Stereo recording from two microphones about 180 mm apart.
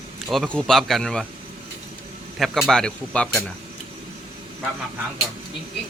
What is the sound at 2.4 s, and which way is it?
A man's voice, centre (ahead or behind).